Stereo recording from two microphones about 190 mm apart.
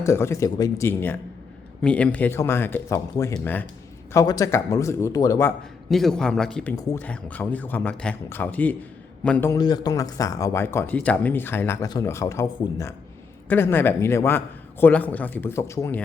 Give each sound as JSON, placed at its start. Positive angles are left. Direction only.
{"t": 0.0, "sound": "speech", "side_deg": 15}
{"t": 5.9, "sound": "speech", "side_deg": 0}